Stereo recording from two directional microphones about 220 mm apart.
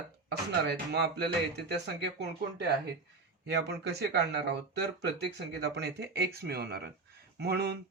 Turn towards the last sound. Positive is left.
turn(degrees=-45)  # may be behind; listen again after turning